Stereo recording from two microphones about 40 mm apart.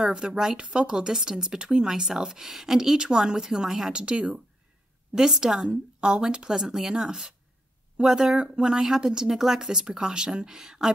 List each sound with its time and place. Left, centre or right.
0.1 s speech: centre
3.9 s speech: right